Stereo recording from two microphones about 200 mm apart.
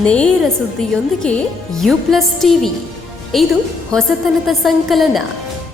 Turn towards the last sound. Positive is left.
turn(degrees=0)  # may be behind; listen again after turning